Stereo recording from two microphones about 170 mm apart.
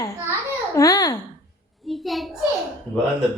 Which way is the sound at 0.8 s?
20° left (ahead or behind).